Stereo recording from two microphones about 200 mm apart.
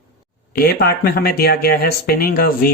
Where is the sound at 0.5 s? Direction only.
50° left (ahead or behind).